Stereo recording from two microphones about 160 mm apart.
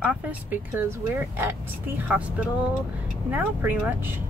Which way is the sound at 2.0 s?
5° right (ahead or behind).